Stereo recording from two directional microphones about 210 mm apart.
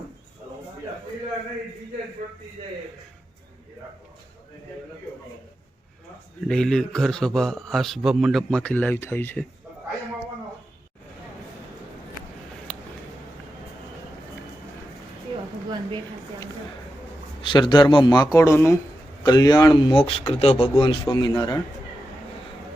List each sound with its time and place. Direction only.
6.5 s a man's voice: 5° left (ahead or behind)
17.4 s speech: 20° left (ahead or behind)